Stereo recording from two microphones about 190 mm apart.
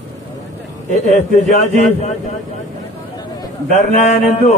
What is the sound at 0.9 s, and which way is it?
A man's voice, 35° left (ahead or behind).